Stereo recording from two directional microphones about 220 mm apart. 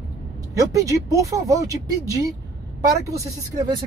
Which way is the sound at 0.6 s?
15° right (ahead or behind).